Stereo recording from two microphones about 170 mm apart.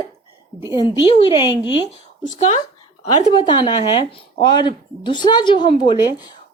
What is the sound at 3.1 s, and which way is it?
A woman's voice, 30° left (ahead or behind).